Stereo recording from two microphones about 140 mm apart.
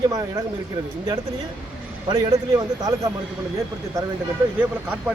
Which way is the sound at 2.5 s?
25° right (ahead or behind).